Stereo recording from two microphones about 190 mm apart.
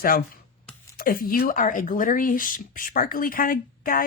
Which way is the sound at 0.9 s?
50° left (ahead or behind).